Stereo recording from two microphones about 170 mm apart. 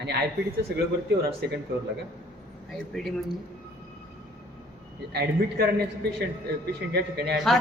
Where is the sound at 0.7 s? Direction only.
75° right (ahead or behind).